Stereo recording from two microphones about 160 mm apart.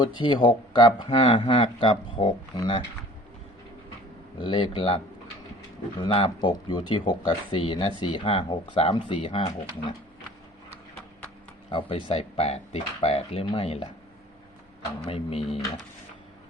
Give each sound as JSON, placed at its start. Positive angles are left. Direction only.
{"t": 0.0, "sound": "speech", "side_deg": 30}
{"t": 4.4, "sound": "speech", "side_deg": 30}
{"t": 6.0, "sound": "speech", "side_deg": 35}
{"t": 11.7, "sound": "speech", "side_deg": 30}
{"t": 15.0, "sound": "speech", "side_deg": 35}